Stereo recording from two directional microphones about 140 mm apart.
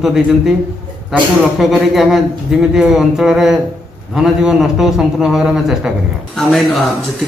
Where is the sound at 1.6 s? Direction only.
Centre (ahead or behind).